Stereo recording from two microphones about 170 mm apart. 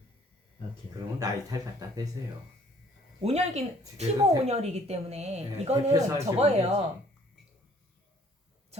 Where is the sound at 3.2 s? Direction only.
35° right (ahead or behind).